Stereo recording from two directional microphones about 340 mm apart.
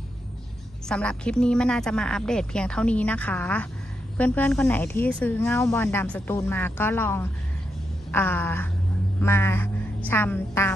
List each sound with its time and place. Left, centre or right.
0.8 s speech: centre
9.2 s music: centre